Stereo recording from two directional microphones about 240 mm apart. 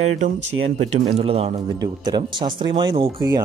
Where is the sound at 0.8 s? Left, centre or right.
Right.